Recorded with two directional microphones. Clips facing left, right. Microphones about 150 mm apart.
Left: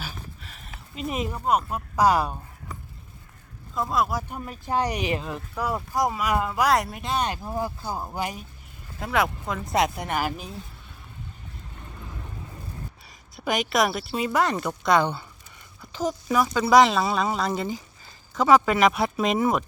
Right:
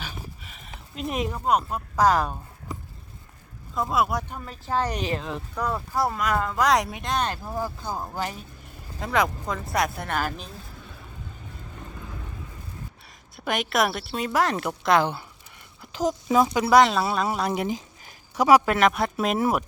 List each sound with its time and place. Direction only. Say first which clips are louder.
0.0 s a sound: even; centre (ahead or behind)
0.9 s speech: right 1 dB; centre (ahead or behind)
3.8 s speech: right 1 dB; 5° right (ahead or behind)
4.4 s speech: left 2 dB; 15° left (ahead or behind)
9.7 s speech: left 2 dB; 20° left (ahead or behind)
13.3 s speech: left 1 dB; centre (ahead or behind)
15.8 s speech: right 2 dB; 15° right (ahead or behind)
16.7 s speech: left 1 dB; centre (ahead or behind)